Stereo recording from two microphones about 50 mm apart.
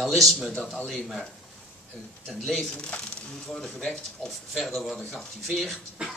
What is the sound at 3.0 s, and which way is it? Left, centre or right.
A man's voice, centre.